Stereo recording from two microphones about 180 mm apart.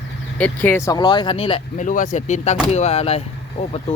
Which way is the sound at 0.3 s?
10° left (ahead or behind).